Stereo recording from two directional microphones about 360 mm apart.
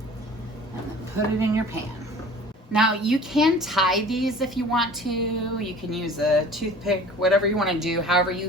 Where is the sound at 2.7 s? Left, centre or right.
Centre.